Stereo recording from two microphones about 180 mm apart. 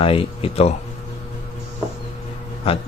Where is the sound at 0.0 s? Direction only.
30° left (ahead or behind).